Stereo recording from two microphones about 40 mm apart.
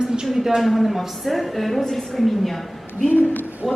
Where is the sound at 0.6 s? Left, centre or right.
Centre.